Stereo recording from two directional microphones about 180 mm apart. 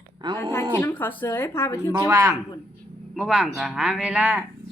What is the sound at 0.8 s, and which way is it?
A woman's voice, 10° left (ahead or behind).